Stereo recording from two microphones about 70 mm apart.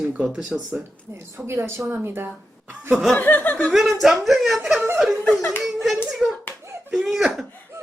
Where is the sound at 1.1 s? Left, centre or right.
Right.